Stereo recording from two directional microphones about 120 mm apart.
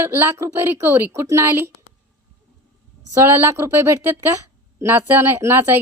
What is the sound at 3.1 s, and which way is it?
Speech, 20° right (ahead or behind).